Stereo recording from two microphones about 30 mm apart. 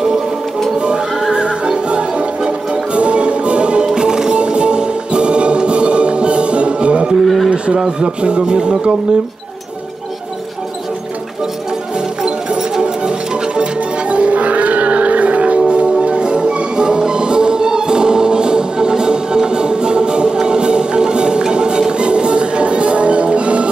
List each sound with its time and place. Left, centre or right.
0.7 s a sound: right
1.3 s music: right
3.9 s music: right
4.4 s music: right
7.2 s a sound: centre
7.4 s a sound: right
8.0 s music: right
12.8 s music: right
14.0 s music: right